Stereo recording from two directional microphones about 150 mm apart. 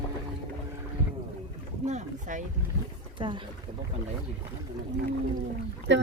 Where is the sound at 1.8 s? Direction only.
55° right (ahead or behind).